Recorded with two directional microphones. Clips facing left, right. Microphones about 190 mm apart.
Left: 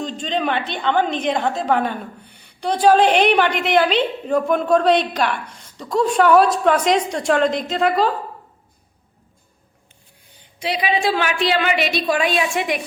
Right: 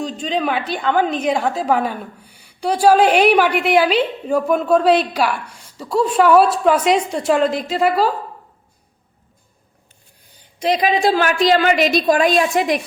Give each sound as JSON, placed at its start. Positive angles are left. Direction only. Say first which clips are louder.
{"t": 0.0, "sound": "a woman's voice", "louder": "right 2 dB", "side_deg": -5}
{"t": 10.6, "sound": "a woman's voice", "louder": "right 4 dB", "side_deg": -45}